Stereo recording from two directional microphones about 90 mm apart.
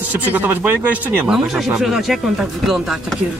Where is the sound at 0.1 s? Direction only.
20° right (ahead or behind).